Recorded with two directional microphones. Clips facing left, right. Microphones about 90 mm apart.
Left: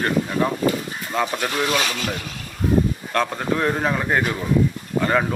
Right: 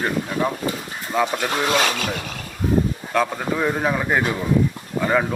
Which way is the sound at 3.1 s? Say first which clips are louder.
Even; 5° right (ahead or behind).